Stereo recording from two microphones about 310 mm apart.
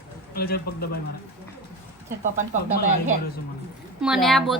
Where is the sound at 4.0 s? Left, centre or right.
Centre.